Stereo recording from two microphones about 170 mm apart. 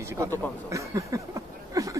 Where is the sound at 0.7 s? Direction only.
20° right (ahead or behind).